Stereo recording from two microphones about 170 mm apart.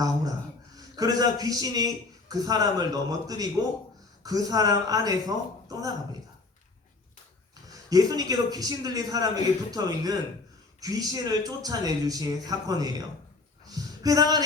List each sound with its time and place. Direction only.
0.8 s a man's voice: 20° right (ahead or behind)
7.7 s a man's voice: 20° right (ahead or behind)